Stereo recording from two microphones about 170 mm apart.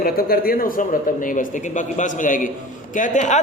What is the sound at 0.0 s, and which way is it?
A man's voice, 60° left (ahead or behind).